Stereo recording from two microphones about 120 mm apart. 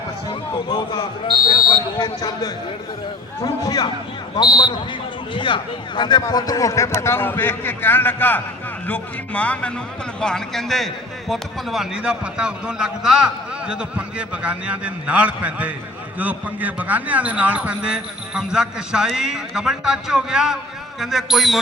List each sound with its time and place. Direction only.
0.7 s speech: 40° left (ahead or behind)
5.3 s a man's voice: 45° left (ahead or behind); by 21.6 s centre (ahead or behind)